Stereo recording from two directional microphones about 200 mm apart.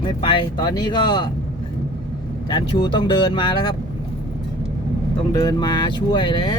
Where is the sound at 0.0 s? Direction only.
25° left (ahead or behind).